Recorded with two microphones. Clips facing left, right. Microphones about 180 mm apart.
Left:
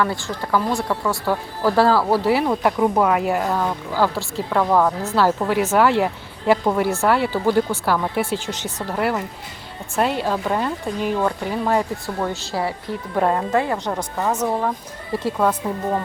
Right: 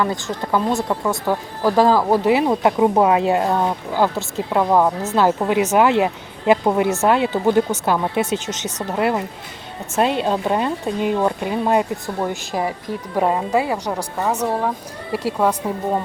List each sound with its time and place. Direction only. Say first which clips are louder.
0.0 s speech: right 1 dB; 20° right (ahead or behind)